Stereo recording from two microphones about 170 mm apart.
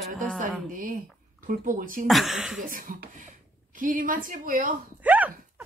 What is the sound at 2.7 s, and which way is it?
A woman's voice, 55° right (ahead or behind).